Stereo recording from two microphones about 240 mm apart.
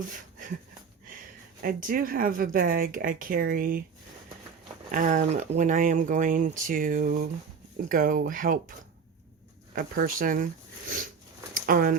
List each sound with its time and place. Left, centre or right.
1.6 s speech: right
4.9 s speech: right
9.7 s speech: right